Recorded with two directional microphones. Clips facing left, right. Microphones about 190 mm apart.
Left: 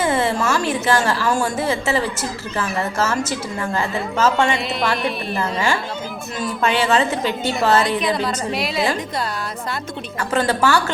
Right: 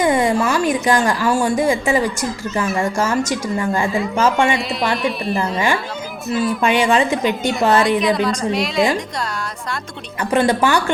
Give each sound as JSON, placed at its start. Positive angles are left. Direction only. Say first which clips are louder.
{"t": 0.0, "sound": "a sound", "louder": "right 3 dB", "side_deg": -15}
{"t": 0.7, "sound": "a woman's voice", "louder": "right 2 dB", "side_deg": -15}
{"t": 4.5, "sound": "speech", "louder": "right 1 dB", "side_deg": 0}
{"t": 5.4, "sound": "a woman's voice", "louder": "even", "side_deg": -15}
{"t": 8.0, "sound": "speech", "louder": "right 4 dB", "side_deg": 0}
{"t": 10.3, "sound": "a woman's voice", "louder": "right 2 dB", "side_deg": -15}